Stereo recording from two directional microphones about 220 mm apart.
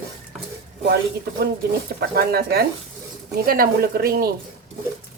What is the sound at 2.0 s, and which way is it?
A woman's voice, 45° right (ahead or behind).